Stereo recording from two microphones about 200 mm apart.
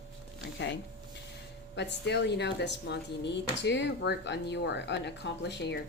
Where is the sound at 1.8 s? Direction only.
60° left (ahead or behind).